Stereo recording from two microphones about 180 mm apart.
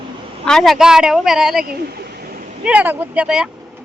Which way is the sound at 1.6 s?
60° right (ahead or behind).